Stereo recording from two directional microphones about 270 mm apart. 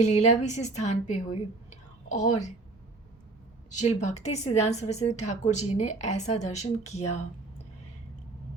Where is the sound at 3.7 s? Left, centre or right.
Left.